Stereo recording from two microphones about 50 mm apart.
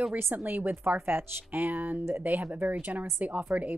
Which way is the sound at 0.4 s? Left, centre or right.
Right.